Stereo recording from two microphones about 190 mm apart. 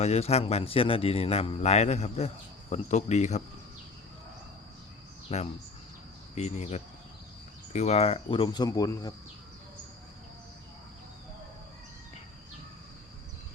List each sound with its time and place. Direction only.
0.0 s a man's voice: 35° left (ahead or behind)
5.3 s a man's voice: 35° left (ahead or behind); by 9.1 s 20° left (ahead or behind)